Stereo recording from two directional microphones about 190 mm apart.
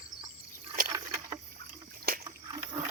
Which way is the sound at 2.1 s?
55° right (ahead or behind).